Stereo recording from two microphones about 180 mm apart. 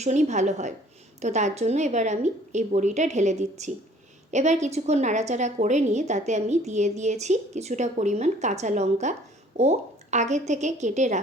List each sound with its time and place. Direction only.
0.0 s a woman's voice: 40° right (ahead or behind)